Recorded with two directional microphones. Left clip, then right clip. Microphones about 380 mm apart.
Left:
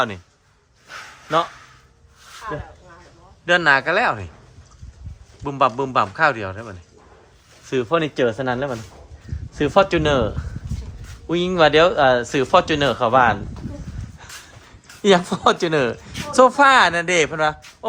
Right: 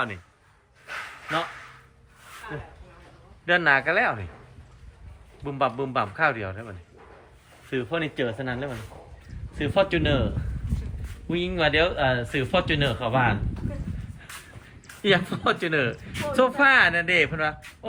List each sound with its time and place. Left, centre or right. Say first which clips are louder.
3.4 s a man's voice: left 5 dB; centre
5.5 s a man's voice: left 7 dB; centre
9.6 s speech: left 7 dB; centre
11.3 s speech: left 8 dB; centre
15.0 s speech: left 7 dB; centre